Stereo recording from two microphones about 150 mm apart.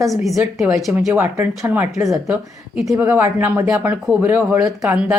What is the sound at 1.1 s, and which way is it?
Speech, 15° right (ahead or behind).